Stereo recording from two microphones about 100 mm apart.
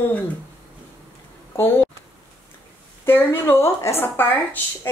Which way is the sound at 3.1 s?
20° left (ahead or behind).